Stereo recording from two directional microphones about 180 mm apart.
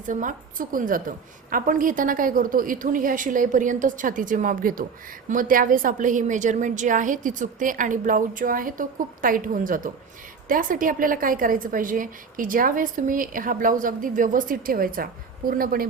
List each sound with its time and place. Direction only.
0.0 s a woman's voice: 45° right (ahead or behind)